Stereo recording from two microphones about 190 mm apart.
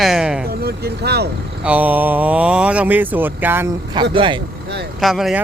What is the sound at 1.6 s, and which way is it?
Speech, 10° right (ahead or behind).